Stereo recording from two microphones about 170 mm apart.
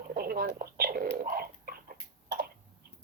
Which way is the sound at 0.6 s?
65° right (ahead or behind).